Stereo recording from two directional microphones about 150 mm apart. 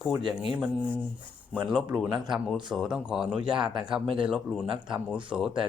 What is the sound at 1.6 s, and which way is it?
Speech, 5° right (ahead or behind).